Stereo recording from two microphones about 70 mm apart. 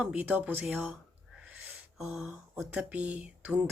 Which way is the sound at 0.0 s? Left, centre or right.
Right.